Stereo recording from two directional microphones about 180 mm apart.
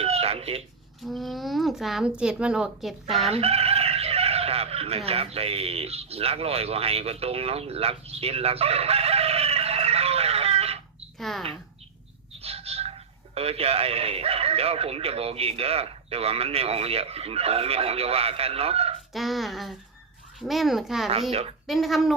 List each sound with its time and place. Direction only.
0.0 s a sound: 35° right (ahead or behind)
1.0 s speech: centre (ahead or behind)
3.2 s speech: 35° right (ahead or behind)
11.2 s speech: centre (ahead or behind)
12.4 s a sound: 35° right (ahead or behind)
13.3 s speech: 35° right (ahead or behind)
19.1 s speech: centre (ahead or behind)
21.1 s speech: 35° right (ahead or behind)
21.7 s speech: centre (ahead or behind)